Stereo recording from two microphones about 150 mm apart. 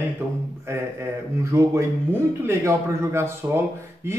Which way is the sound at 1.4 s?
20° right (ahead or behind).